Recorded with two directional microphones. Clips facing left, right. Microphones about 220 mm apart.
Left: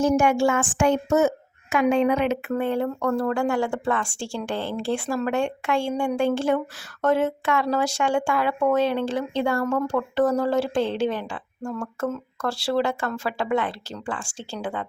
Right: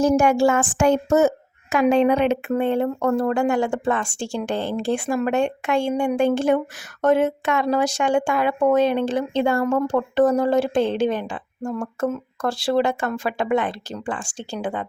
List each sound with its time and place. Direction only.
0.0 s speech: 40° right (ahead or behind); by 14.8 s 15° right (ahead or behind)